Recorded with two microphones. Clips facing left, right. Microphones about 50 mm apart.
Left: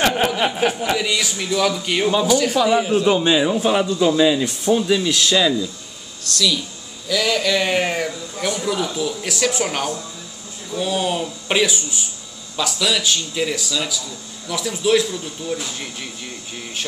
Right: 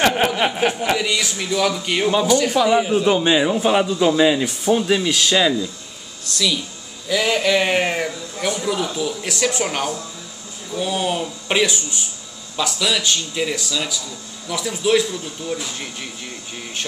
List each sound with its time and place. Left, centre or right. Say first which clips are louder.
0.0 s a sound: right 1 dB; centre
1.0 s speech: even; centre
2.2 s a man's voice: even; centre